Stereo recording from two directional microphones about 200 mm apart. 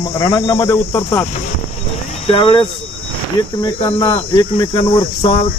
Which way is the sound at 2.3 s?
25° left (ahead or behind).